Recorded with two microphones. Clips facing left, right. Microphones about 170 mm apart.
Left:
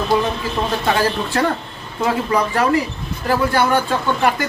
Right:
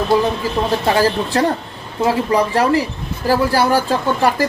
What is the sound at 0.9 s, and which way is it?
Speech, 35° right (ahead or behind).